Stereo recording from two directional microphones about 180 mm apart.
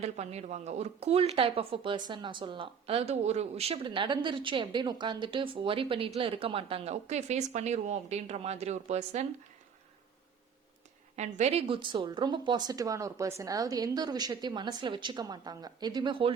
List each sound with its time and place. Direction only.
0.0 s speech: 35° right (ahead or behind)
11.2 s a woman's voice: 40° right (ahead or behind)